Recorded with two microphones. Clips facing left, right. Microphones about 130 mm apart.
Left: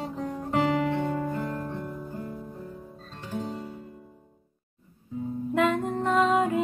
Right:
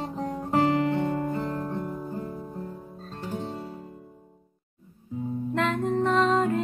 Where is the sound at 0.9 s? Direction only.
Centre (ahead or behind).